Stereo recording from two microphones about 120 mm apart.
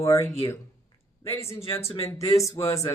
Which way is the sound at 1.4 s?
20° left (ahead or behind).